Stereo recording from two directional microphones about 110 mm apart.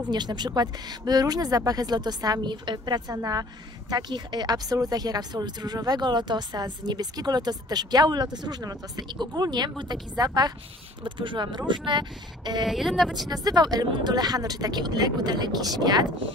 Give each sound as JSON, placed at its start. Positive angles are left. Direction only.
{"t": 0.1, "sound": "speech", "side_deg": -40}
{"t": 12.6, "sound": "a woman's voice", "side_deg": 0}
{"t": 13.3, "sound": "speech", "side_deg": -35}